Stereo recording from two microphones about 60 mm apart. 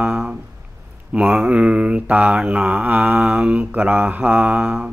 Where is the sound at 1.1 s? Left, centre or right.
Centre.